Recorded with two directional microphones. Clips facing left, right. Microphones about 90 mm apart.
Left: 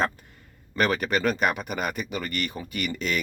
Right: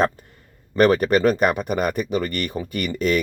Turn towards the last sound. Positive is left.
turn(degrees=-45)  # may be behind; listen again after turning